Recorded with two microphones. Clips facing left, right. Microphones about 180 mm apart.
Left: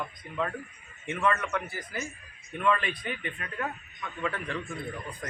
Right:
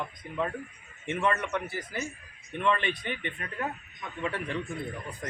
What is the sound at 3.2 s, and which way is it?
Speech, 30° right (ahead or behind).